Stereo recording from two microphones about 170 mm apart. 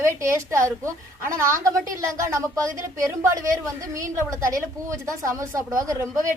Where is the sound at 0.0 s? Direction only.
15° right (ahead or behind).